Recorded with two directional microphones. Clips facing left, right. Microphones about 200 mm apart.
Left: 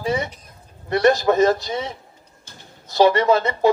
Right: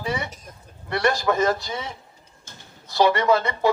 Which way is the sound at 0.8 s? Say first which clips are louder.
Left 6 dB; 25° left (ahead or behind).